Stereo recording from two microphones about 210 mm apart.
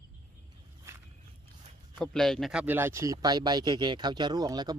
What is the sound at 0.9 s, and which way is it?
Walk, 15° right (ahead or behind).